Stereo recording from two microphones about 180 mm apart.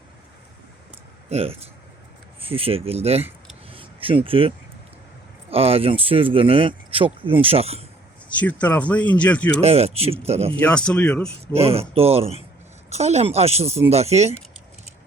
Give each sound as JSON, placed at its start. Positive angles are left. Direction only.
{"t": 1.3, "sound": "speech", "side_deg": -35}
{"t": 3.7, "sound": "a sound", "side_deg": -30}
{"t": 5.5, "sound": "speech", "side_deg": -35}
{"t": 8.4, "sound": "speech", "side_deg": 10}
{"t": 9.6, "sound": "speech", "side_deg": -35}
{"t": 10.5, "sound": "speech", "side_deg": 5}
{"t": 11.3, "sound": "speech", "side_deg": -35}